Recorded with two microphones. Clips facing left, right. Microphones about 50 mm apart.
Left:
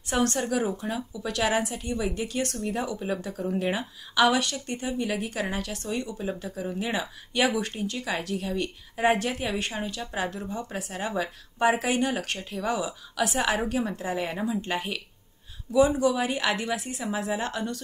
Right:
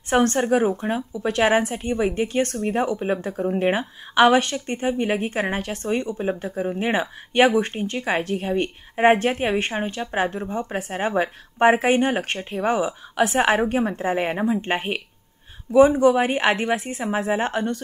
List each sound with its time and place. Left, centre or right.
0.1 s a woman's voice: right